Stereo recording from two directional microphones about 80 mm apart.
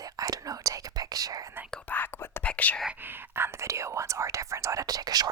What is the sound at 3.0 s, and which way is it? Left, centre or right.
Whispering, right.